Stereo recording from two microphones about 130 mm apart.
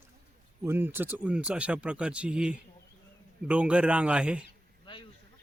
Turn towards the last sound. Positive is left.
turn(degrees=35)  # may be behind; listen again after turning